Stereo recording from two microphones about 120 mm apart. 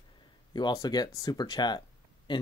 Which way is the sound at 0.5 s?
35° left (ahead or behind).